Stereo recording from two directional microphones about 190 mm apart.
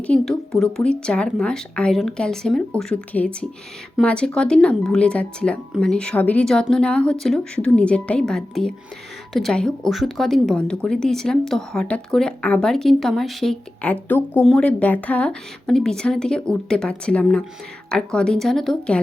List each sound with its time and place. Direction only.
0.0 s speech: 5° left (ahead or behind)